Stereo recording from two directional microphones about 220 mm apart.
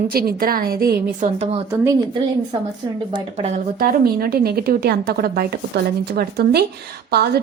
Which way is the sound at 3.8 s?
45° right (ahead or behind).